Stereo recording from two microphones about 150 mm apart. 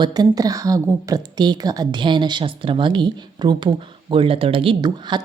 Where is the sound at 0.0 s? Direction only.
30° right (ahead or behind).